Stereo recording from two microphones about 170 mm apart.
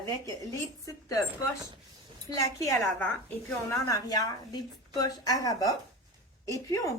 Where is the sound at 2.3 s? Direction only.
20° left (ahead or behind).